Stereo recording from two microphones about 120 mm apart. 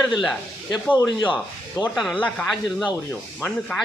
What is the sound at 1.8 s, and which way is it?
Speech, 30° left (ahead or behind).